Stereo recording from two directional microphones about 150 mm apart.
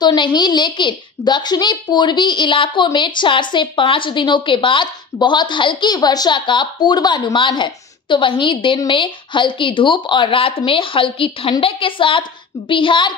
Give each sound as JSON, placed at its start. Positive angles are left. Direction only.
{"t": 0.0, "sound": "a woman's voice", "side_deg": 30}